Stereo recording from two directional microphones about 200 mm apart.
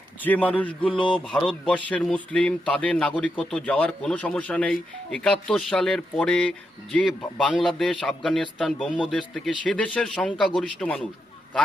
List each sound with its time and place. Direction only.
0.2 s speech: 10° left (ahead or behind)
0.9 s speech: 25° left (ahead or behind)
1.3 s speech: 5° left (ahead or behind)